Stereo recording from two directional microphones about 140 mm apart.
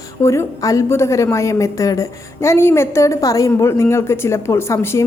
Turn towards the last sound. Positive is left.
turn(degrees=20)  # may be behind; listen again after turning